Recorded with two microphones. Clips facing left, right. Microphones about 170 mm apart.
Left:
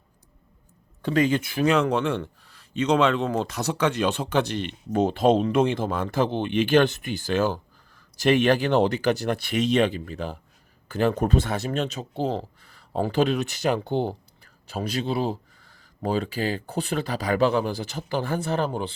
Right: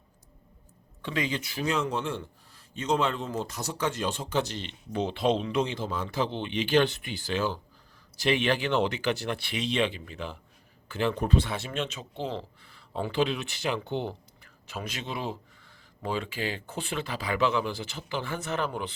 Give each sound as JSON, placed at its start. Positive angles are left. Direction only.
{"t": 1.0, "sound": "speech", "side_deg": 45}